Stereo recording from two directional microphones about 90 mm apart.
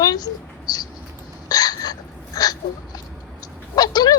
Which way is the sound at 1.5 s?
45° left (ahead or behind).